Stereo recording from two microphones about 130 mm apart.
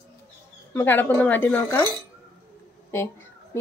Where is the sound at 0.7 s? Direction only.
15° left (ahead or behind).